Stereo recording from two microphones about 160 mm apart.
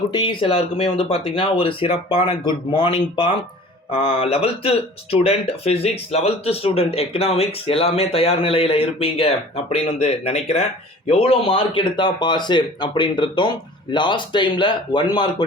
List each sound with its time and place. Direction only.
0.1 s speech: 30° left (ahead or behind)